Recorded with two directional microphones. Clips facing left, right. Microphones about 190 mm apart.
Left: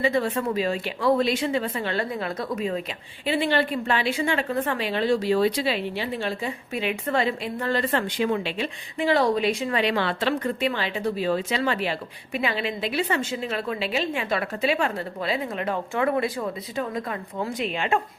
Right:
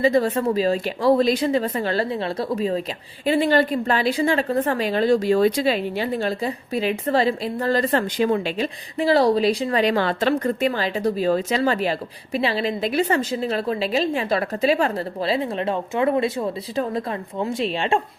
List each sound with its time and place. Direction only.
0.0 s a woman's voice: 40° right (ahead or behind)